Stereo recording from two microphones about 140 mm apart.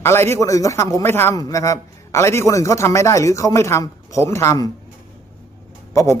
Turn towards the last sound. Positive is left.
turn(degrees=20)  # may be behind; listen again after turning